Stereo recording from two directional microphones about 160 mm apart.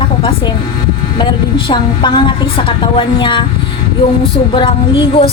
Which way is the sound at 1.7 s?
30° left (ahead or behind).